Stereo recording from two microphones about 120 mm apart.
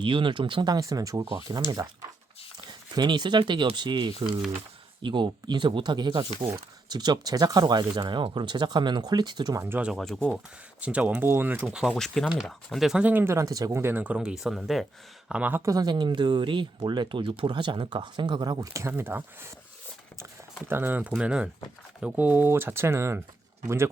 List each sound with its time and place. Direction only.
0.0 s speech: 45° right (ahead or behind)
9.6 s speech: 15° right (ahead or behind)
9.9 s speech: 5° left (ahead or behind)
10.3 s speech: 10° right (ahead or behind)
15.3 s speech: 15° right (ahead or behind)
15.6 s speech: 30° right (ahead or behind)
20.7 s speech: 15° right (ahead or behind)